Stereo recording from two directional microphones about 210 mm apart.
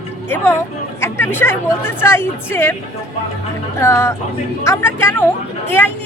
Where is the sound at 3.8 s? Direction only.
10° left (ahead or behind).